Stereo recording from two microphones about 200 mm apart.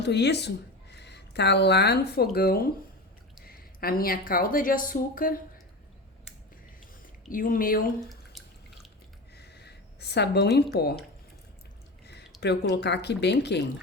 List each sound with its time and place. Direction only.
0.0 s speech: 55° left (ahead or behind)
7.3 s speech: 45° left (ahead or behind)
8.1 s drip: centre (ahead or behind)
9.3 s a sound: 55° left (ahead or behind)
12.4 s speech: 60° left (ahead or behind)